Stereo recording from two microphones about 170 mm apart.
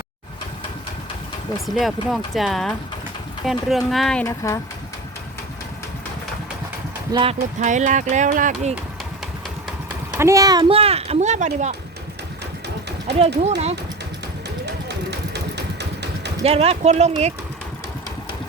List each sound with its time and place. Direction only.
1.6 s speech: centre (ahead or behind)
4.3 s speech: 15° left (ahead or behind)
7.1 s speech: 30° right (ahead or behind)
7.6 s speech: 45° right (ahead or behind)
10.1 s a child's voice: 15° right (ahead or behind)
10.8 s speech: 35° right (ahead or behind)
13.1 s speech: 40° right (ahead or behind)
14.8 s engine: 80° right
16.4 s speech: 35° right (ahead or behind)